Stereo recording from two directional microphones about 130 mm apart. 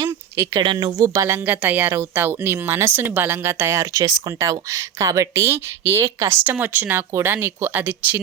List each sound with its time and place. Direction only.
0.5 s a woman's voice: 40° right (ahead or behind); by 8.2 s 15° right (ahead or behind)